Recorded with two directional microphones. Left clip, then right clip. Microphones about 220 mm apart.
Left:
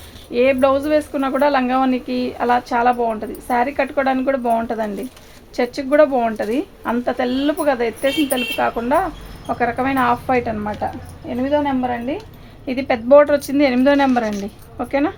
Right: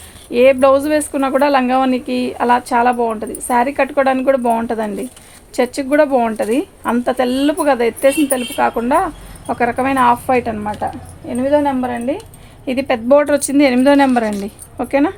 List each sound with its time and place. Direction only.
0.3 s speech: 40° right (ahead or behind)